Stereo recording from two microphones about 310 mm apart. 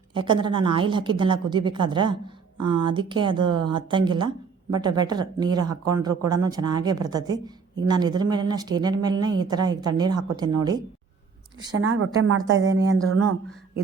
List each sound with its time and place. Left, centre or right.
0.1 s a woman's voice: centre
10.1 s speech: right
10.6 s a woman's voice: centre
11.7 s speech: right